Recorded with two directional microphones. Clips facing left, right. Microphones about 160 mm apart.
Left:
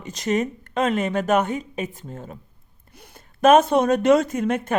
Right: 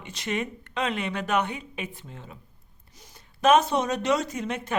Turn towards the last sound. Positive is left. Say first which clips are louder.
# left 8 dB
turn(degrees=50)  # may be behind; listen again after turning